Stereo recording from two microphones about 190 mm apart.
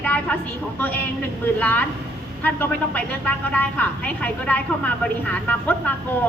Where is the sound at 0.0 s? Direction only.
5° left (ahead or behind).